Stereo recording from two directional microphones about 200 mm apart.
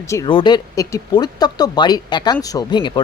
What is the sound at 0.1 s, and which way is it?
Speech, 20° left (ahead or behind).